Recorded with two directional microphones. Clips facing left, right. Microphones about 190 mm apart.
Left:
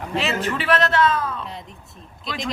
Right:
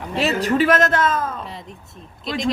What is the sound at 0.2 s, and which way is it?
A man's voice, 40° right (ahead or behind).